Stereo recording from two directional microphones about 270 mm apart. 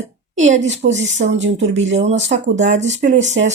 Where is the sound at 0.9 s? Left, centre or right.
Right.